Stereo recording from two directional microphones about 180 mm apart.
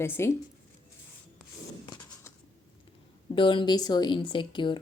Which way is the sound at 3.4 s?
25° left (ahead or behind).